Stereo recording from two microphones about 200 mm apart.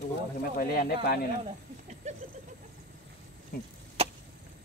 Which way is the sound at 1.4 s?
35° right (ahead or behind).